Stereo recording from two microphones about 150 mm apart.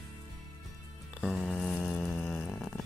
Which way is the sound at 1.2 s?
Centre (ahead or behind).